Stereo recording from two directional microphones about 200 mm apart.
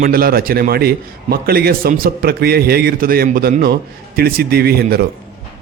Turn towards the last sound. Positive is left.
turn(degrees=-50)  # may be behind; listen again after turning